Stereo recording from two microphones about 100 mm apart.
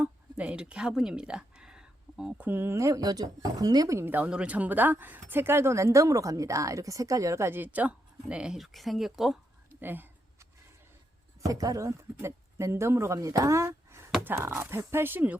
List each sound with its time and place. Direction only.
0.0 s a sound: 15° right (ahead or behind)
2.5 s speech: 20° right (ahead or behind)
4.1 s speech: 15° right (ahead or behind)
9.8 s speech: 20° right (ahead or behind)
11.4 s speech: 35° right (ahead or behind); by 15.4 s 20° right (ahead or behind)